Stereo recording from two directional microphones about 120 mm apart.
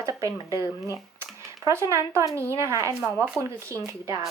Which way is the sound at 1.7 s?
25° right (ahead or behind).